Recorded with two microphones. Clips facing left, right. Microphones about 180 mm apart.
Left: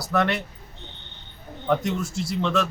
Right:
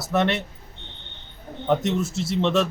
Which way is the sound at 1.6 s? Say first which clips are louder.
Right 2 dB; 25° right (ahead or behind).